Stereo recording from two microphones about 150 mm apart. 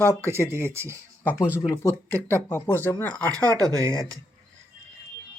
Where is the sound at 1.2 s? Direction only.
10° left (ahead or behind).